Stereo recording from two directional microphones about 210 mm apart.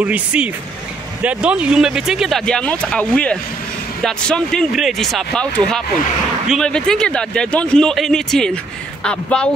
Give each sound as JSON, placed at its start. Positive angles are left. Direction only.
{"t": 0.0, "sound": "speech", "side_deg": -5}